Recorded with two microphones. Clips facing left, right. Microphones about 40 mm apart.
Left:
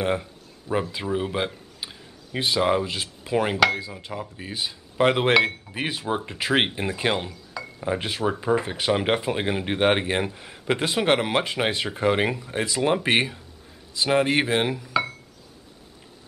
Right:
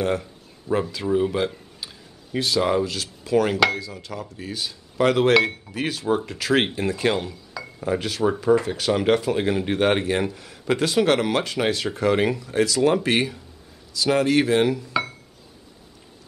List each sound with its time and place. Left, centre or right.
0.0 s a sound: centre
1.1 s speech: centre
14.9 s dishes: centre